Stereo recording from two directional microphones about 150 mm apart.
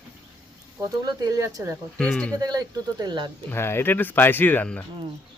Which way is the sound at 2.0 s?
10° left (ahead or behind).